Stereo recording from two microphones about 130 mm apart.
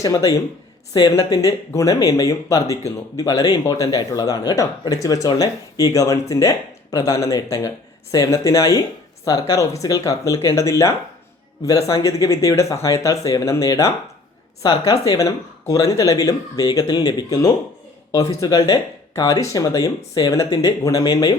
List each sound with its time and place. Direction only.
0.0 s speech: 25° left (ahead or behind)